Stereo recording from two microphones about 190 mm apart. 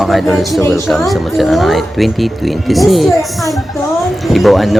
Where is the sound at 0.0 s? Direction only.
Centre (ahead or behind).